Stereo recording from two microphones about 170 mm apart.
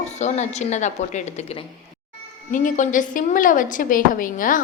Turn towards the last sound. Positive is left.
turn(degrees=55)  # may be behind; listen again after turning